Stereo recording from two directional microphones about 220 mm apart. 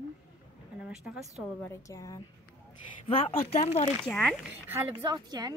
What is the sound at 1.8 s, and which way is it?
A woman's voice, 15° left (ahead or behind).